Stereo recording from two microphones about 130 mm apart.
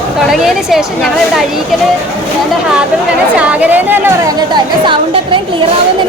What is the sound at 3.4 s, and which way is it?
Speech, 10° right (ahead or behind).